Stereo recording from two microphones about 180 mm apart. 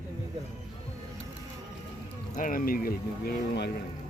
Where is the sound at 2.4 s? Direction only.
50° left (ahead or behind).